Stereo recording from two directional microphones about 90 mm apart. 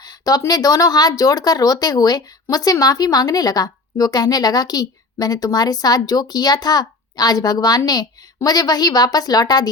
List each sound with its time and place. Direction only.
0.0 s speech: 45° left (ahead or behind)